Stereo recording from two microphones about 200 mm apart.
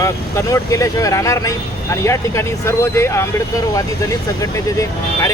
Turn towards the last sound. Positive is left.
turn(degrees=15)  # may be behind; listen again after turning